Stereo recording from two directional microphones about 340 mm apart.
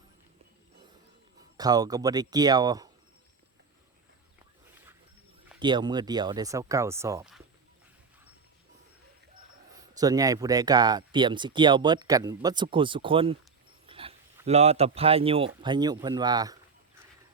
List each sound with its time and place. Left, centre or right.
1.5 s speech: centre
5.5 s speech: centre
9.7 s speech: centre